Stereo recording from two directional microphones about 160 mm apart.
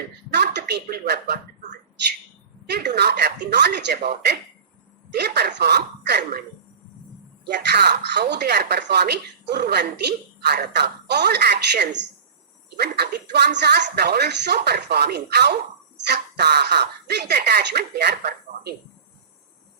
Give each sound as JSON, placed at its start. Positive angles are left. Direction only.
{"t": 0.3, "sound": "speech", "side_deg": -90}
{"t": 2.6, "sound": "speech", "side_deg": -90}
{"t": 7.4, "sound": "speech", "side_deg": -90}